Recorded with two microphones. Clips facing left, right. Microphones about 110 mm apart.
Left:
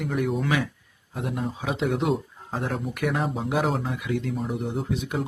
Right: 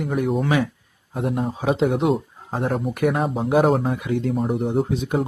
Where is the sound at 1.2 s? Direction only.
40° right (ahead or behind).